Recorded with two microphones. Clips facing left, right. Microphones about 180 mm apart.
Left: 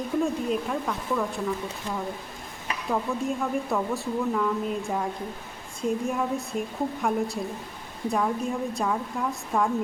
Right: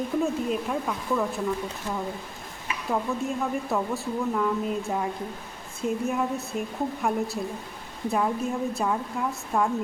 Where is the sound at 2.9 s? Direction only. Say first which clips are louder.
Even; centre (ahead or behind).